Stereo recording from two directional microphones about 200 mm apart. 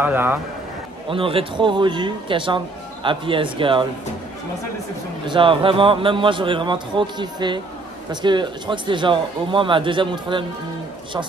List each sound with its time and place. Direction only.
0.0 s a man's voice: 10° right (ahead or behind)
1.0 s a man's voice: 25° right (ahead or behind)
5.2 s a man's voice: 25° right (ahead or behind)